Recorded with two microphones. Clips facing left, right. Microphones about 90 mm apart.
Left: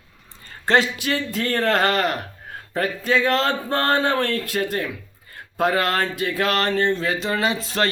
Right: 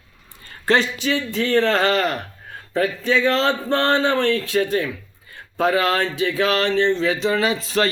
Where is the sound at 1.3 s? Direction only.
50° left (ahead or behind).